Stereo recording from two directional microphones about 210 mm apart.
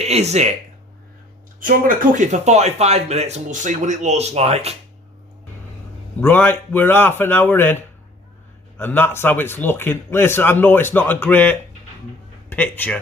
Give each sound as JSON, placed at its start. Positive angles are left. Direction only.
{"t": 0.0, "sound": "speech", "side_deg": -30}
{"t": 1.5, "sound": "speech", "side_deg": -40}
{"t": 6.1, "sound": "speech", "side_deg": 10}
{"t": 8.8, "sound": "speech", "side_deg": 10}